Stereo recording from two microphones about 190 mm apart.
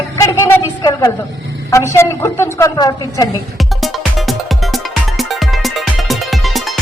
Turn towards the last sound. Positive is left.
turn(degrees=0)  # may be behind; listen again after turning